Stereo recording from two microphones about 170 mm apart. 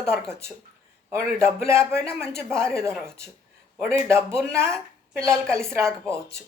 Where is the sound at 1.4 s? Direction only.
15° right (ahead or behind).